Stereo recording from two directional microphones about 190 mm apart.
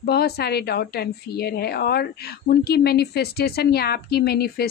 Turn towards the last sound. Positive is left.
turn(degrees=55)  # may be behind; listen again after turning